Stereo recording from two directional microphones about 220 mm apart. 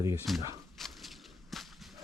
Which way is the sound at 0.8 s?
Centre (ahead or behind).